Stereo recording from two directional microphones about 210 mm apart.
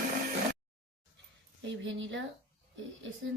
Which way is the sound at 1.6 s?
60° right (ahead or behind).